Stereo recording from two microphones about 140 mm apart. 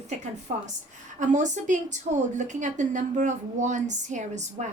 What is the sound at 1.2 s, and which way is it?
A woman's voice, 60° right (ahead or behind).